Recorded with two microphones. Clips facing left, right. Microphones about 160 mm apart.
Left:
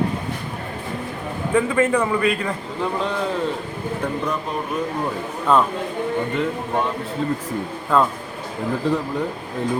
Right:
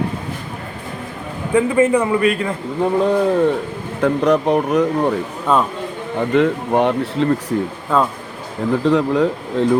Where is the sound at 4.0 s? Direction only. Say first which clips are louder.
Right 12 dB; 85° right.